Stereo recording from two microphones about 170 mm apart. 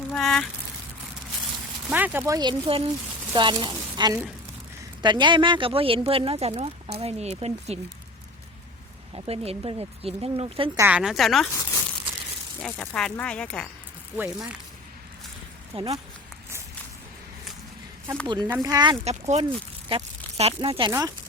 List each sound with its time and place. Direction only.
0.1 s speech: 5° left (ahead or behind)
1.9 s speech: 10° right (ahead or behind); by 7.8 s 40° right (ahead or behind)
9.1 s speech: 35° right (ahead or behind)
10.8 s speech: 10° right (ahead or behind)
12.6 s speech: 10° left (ahead or behind)
14.2 s speech: 5° right (ahead or behind)
15.7 s speech: 30° right (ahead or behind)
18.3 s speech: 25° right (ahead or behind)
19.0 s speech: 40° right (ahead or behind)